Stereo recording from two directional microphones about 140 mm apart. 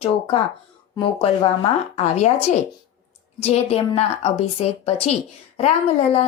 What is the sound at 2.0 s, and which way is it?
Speech, 50° left (ahead or behind).